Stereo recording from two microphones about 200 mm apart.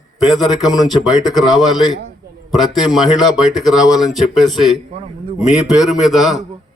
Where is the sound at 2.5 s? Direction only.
Centre (ahead or behind).